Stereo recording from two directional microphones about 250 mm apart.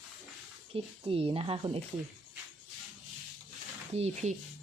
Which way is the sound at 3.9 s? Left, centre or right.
Right.